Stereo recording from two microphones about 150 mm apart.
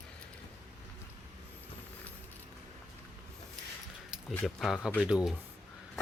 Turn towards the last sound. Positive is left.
turn(degrees=-5)  # may be behind; listen again after turning